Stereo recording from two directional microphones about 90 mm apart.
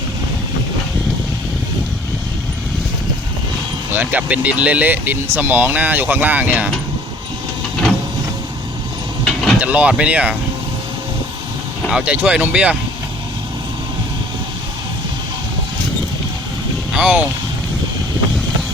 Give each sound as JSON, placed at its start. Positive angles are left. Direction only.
{"t": 3.9, "sound": "speech", "side_deg": -15}
{"t": 9.2, "sound": "vehicle", "side_deg": 0}
{"t": 9.6, "sound": "speech", "side_deg": -15}
{"t": 11.9, "sound": "speech", "side_deg": -10}
{"t": 17.0, "sound": "speech", "side_deg": -10}